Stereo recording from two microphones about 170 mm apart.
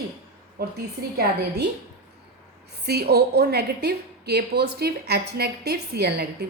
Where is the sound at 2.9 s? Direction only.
70° right (ahead or behind).